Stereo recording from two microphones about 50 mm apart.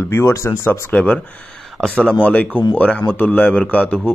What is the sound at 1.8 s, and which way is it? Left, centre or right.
Speech, centre.